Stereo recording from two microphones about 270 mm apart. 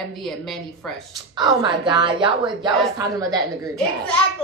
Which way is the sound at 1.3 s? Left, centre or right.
Centre.